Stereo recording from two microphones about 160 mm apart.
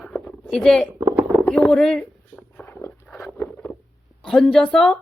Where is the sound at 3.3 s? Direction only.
10° left (ahead or behind).